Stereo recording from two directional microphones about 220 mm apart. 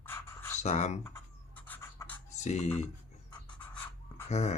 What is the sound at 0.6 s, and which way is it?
Speech, 30° left (ahead or behind).